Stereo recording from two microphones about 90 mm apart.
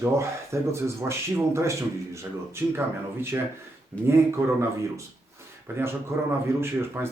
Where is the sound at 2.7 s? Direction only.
25° right (ahead or behind).